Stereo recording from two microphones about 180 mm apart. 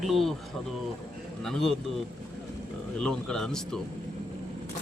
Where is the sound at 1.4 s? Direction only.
Centre (ahead or behind).